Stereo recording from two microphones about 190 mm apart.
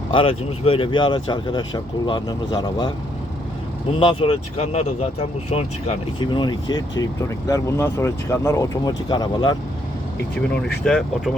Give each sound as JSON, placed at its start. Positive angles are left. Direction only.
{"t": 0.1, "sound": "speech", "side_deg": 30}
{"t": 4.0, "sound": "speech", "side_deg": 30}
{"t": 10.8, "sound": "speech", "side_deg": 5}